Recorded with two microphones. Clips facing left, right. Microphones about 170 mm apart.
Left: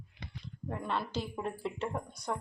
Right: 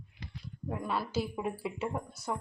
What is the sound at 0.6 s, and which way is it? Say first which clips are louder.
Speech: right 1 dB; 5° right (ahead or behind).